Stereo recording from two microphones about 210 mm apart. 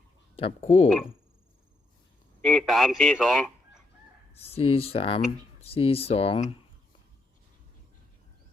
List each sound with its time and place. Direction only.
0.3 s speech: 25° left (ahead or behind)
2.4 s speech: centre (ahead or behind)
4.4 s speech: 30° left (ahead or behind)